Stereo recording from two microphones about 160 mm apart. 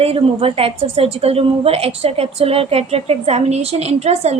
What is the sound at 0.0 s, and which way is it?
A woman's voice, 35° right (ahead or behind).